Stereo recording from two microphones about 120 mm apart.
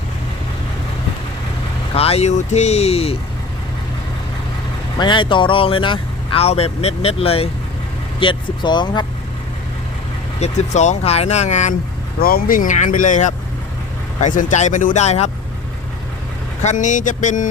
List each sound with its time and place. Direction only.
2.0 s speech: 60° left (ahead or behind)
4.9 s speech: 40° left (ahead or behind)
8.2 s speech: 40° left (ahead or behind)
10.4 s speech: 75° left (ahead or behind)
12.6 s speech: 90° left; by 15.3 s 65° left (ahead or behind)
16.6 s speech: 85° left